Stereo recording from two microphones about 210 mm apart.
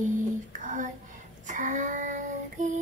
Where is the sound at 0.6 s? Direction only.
40° right (ahead or behind).